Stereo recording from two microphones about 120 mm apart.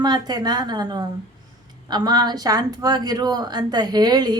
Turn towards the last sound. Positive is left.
turn(degrees=-35)  # may be behind; listen again after turning